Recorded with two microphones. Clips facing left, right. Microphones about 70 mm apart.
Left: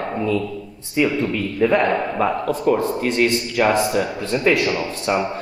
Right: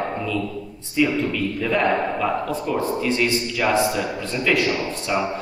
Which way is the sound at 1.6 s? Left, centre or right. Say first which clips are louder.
Left 4 dB; left.